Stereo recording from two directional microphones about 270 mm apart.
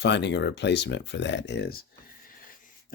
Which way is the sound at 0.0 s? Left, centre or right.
Left.